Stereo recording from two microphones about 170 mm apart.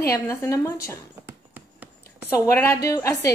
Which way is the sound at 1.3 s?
10° right (ahead or behind).